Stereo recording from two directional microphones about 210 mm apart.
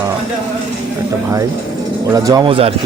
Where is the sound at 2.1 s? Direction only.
15° right (ahead or behind).